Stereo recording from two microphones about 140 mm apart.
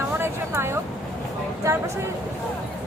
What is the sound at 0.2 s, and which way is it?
Vehicle, 20° right (ahead or behind).